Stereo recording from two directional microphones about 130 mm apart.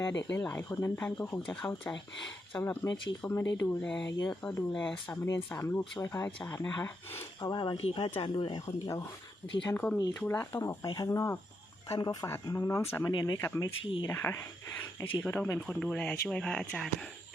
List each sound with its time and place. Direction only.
0.1 s speech: 20° left (ahead or behind)
3.8 s speech: 5° left (ahead or behind); by 7.2 s 25° left (ahead or behind)
7.4 s speech: 35° left (ahead or behind)
9.7 s speech: 15° left (ahead or behind); by 13.4 s 30° left (ahead or behind)
13.4 s speech: 20° left (ahead or behind)